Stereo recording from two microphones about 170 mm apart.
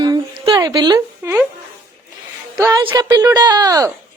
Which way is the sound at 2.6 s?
20° right (ahead or behind).